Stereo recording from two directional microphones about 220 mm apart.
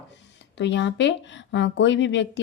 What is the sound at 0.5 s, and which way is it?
Speech, 55° left (ahead or behind).